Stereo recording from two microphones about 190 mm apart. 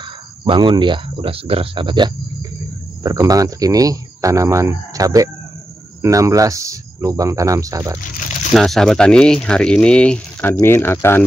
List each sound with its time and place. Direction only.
0.5 s speech: 25° right (ahead or behind)
8.5 s speech: centre (ahead or behind)